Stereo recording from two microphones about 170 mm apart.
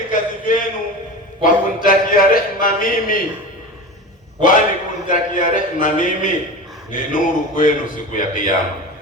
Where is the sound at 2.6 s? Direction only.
55° left (ahead or behind).